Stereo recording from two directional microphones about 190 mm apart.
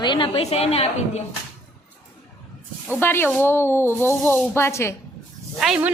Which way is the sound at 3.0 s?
10° left (ahead or behind).